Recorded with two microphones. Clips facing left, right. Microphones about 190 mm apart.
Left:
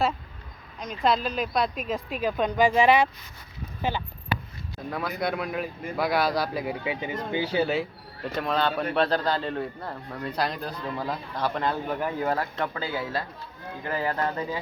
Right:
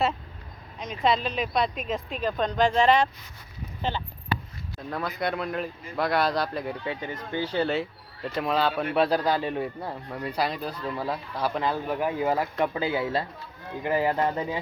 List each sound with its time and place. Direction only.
0.8 s a man's voice: centre (ahead or behind); by 14.6 s 20° right (ahead or behind)